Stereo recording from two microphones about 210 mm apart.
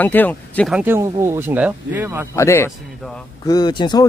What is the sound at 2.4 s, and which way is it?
A man's voice, 10° left (ahead or behind).